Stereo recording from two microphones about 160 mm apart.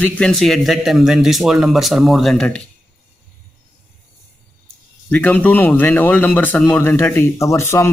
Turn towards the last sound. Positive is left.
turn(degrees=15)  # may be behind; listen again after turning